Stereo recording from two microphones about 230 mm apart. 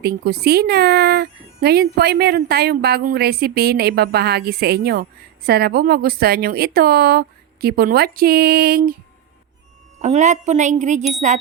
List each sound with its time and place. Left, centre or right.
0.0 s speech: right
10.0 s speech: right